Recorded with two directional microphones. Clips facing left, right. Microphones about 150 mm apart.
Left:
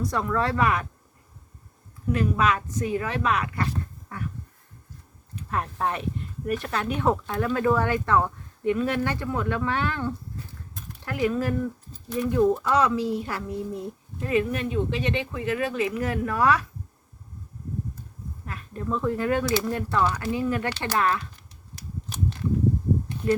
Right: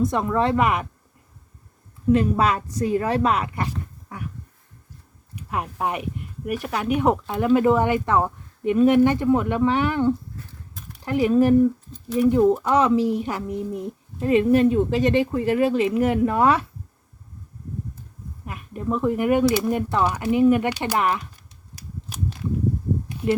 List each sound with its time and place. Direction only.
0.0 s a child's voice: 20° right (ahead or behind)
2.3 s a woman's voice: 35° right (ahead or behind)
5.3 s a child's voice: 15° right (ahead or behind)
18.4 s speech: 15° right (ahead or behind)